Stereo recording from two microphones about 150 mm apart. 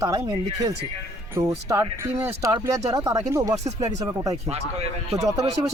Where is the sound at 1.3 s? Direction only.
20° right (ahead or behind).